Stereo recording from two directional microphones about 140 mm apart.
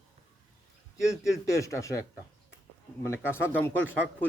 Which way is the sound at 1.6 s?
20° left (ahead or behind).